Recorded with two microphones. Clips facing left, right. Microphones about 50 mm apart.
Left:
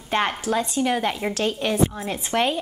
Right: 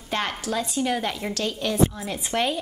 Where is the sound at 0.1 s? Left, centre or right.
Left.